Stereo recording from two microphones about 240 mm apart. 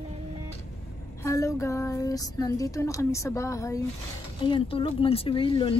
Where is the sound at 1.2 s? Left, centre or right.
Centre.